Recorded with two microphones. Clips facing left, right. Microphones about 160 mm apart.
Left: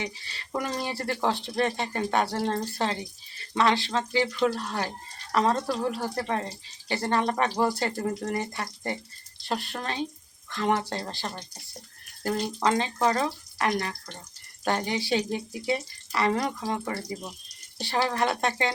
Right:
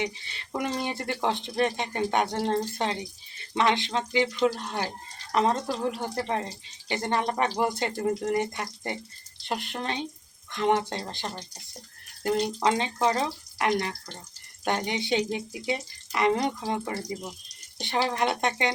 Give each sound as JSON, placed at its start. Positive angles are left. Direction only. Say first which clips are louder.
{"t": 0.0, "sound": "speech", "louder": "right 3 dB", "side_deg": -20}